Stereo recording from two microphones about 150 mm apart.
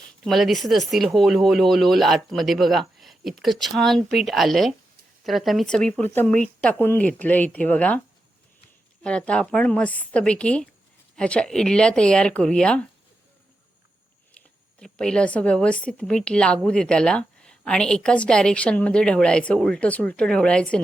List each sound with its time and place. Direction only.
0.3 s speech: centre (ahead or behind)
9.0 s speech: 5° left (ahead or behind)
14.8 s speech: 5° left (ahead or behind)